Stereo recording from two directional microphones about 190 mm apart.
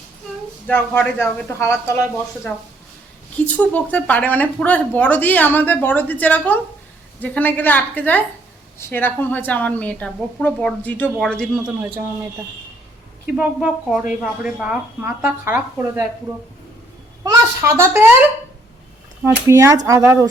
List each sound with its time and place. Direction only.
0.7 s a woman's voice: 10° left (ahead or behind)
3.4 s a woman's voice: 10° left (ahead or behind)
13.2 s speech: 5° right (ahead or behind)
17.2 s speech: 15° right (ahead or behind)
19.2 s speech: 15° right (ahead or behind)